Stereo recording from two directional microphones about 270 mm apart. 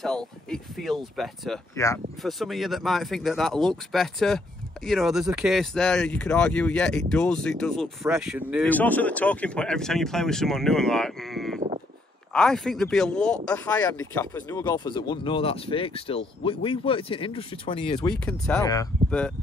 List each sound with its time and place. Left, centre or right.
0.0 s speech: centre
1.8 s speech: centre
2.2 s speech: centre
18.1 s speech: centre